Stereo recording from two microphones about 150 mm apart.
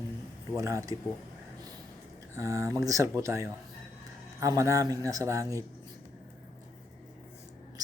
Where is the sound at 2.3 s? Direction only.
20° right (ahead or behind).